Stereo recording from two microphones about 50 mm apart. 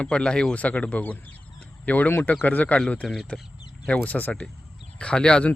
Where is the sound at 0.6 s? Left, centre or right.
Left.